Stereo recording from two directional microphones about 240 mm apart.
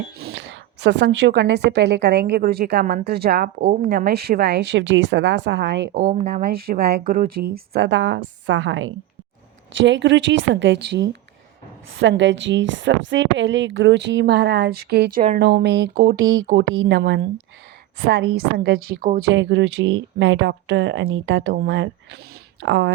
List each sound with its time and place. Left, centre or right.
0.3 s a woman's voice: right
5.9 s speech: right
6.2 s a woman's voice: right
16.2 s a woman's voice: right
19.3 s a woman's voice: right